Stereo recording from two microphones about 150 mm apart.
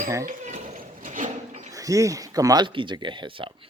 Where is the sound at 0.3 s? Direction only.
50° right (ahead or behind).